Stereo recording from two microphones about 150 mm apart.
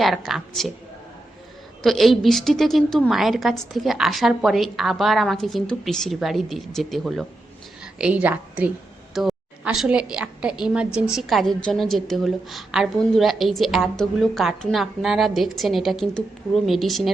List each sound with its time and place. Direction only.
0.0 s a woman's voice: centre (ahead or behind)
1.8 s a woman's voice: centre (ahead or behind)